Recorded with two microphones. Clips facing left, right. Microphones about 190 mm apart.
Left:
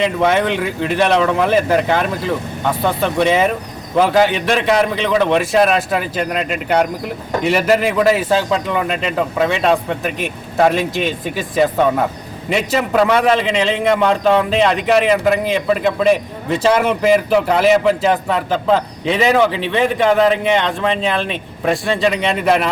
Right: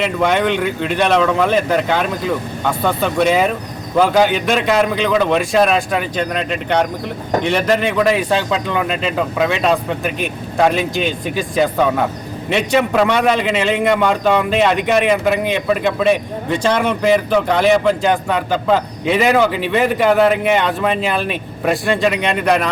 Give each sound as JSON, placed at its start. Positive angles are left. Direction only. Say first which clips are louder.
{"t": 0.0, "sound": "a man's voice", "louder": "left 1 dB", "side_deg": 0}